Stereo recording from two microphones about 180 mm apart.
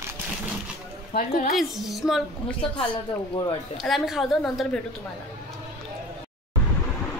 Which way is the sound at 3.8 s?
Centre (ahead or behind).